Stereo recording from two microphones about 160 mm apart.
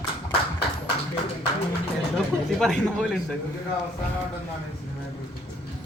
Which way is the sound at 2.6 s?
Centre (ahead or behind).